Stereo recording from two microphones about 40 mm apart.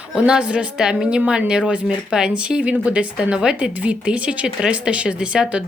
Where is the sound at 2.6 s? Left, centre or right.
Right.